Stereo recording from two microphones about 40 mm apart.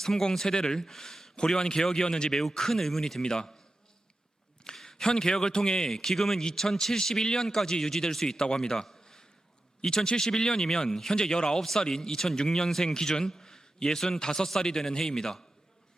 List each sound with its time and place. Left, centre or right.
0.0 s a man's voice: centre
4.6 s a man's voice: centre